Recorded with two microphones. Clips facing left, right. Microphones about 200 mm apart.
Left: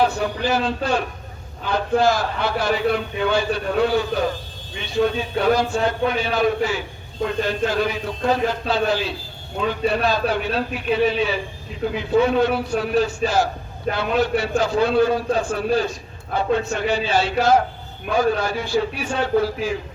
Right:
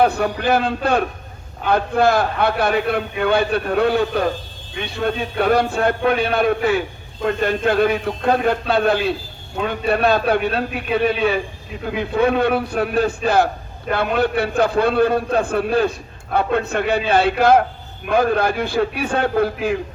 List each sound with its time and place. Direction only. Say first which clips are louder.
0.0 s a man's voice: right 3 dB; 60° right (ahead or behind)